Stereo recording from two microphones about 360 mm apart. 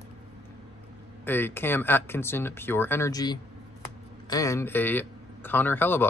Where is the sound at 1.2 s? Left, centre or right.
Centre.